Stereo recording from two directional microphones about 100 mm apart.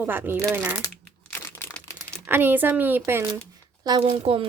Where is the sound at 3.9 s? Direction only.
55° right (ahead or behind).